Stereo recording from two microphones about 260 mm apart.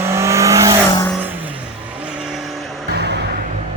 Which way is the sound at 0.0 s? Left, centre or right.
Centre.